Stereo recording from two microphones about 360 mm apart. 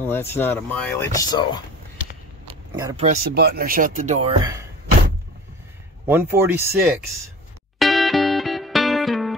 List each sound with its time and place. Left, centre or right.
0.0 s speech: centre
2.7 s speech: centre
6.0 s speech: centre
7.8 s music: centre